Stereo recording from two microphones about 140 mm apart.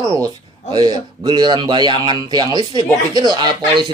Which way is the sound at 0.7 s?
30° right (ahead or behind).